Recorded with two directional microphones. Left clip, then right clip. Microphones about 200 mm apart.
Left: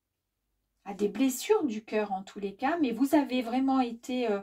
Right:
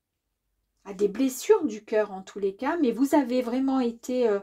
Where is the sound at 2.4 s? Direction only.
40° right (ahead or behind).